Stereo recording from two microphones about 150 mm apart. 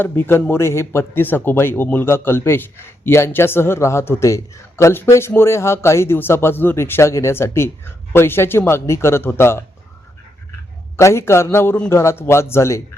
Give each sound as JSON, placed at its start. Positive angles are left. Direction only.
{"t": 0.0, "sound": "a man's voice", "side_deg": 15}
{"t": 10.9, "sound": "a man's voice", "side_deg": 15}